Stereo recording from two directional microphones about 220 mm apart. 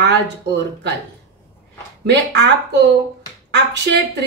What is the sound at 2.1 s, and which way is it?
Speech, 50° right (ahead or behind).